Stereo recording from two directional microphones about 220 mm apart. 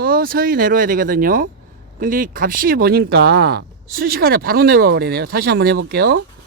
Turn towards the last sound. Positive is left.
turn(degrees=-45)  # may be behind; listen again after turning